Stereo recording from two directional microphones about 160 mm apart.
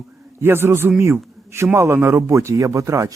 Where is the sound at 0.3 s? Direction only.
15° right (ahead or behind).